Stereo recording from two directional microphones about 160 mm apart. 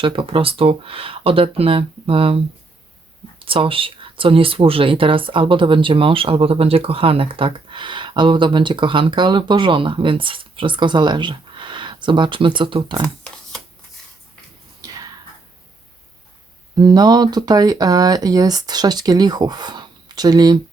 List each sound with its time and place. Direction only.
0.0 s speech: 35° right (ahead or behind)
14.8 s whispering: 25° right (ahead or behind)
16.7 s speech: 25° right (ahead or behind)